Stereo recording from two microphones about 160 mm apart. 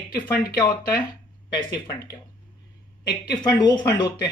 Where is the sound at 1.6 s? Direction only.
25° left (ahead or behind).